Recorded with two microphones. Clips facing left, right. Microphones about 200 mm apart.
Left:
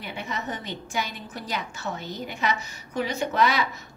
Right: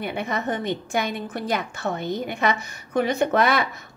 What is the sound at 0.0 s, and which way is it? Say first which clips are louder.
A woman's voice: right 6 dB; 55° right (ahead or behind).